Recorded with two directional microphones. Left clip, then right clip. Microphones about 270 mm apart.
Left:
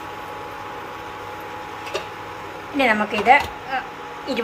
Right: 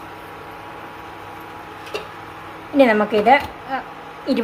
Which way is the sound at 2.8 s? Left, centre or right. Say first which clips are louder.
Right 4 dB; right.